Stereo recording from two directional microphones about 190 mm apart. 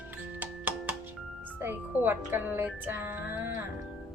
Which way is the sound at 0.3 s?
10° right (ahead or behind).